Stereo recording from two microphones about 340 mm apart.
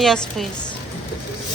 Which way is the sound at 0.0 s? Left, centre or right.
Centre.